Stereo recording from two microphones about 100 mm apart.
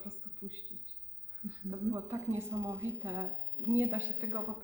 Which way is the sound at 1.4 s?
30° right (ahead or behind).